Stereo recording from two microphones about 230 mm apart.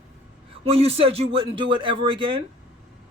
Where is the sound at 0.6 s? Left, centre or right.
Right.